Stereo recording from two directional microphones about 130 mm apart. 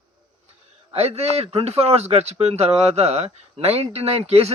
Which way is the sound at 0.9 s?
55° right (ahead or behind).